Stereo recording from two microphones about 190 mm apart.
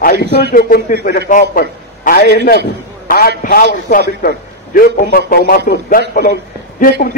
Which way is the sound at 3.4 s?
55° left (ahead or behind).